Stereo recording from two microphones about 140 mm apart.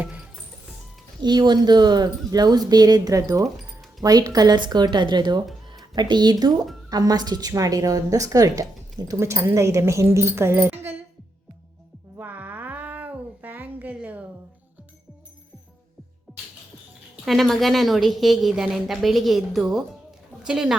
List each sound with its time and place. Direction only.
1.2 s speech: 30° right (ahead or behind)
10.8 s music: 50° right (ahead or behind)
12.1 s cat: 10° right (ahead or behind)
17.2 s a woman's voice: centre (ahead or behind)